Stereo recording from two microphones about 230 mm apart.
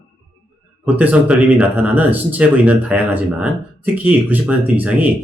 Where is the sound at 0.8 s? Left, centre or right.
Centre.